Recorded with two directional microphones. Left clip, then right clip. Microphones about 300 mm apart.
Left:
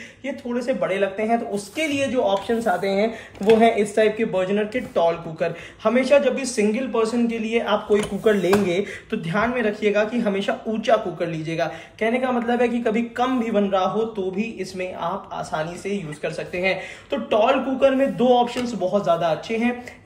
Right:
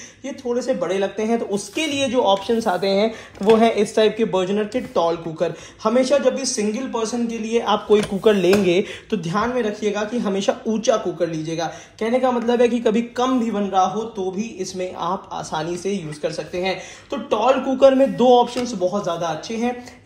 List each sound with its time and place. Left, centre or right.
0.5 s speech: centre
2.3 s speech: centre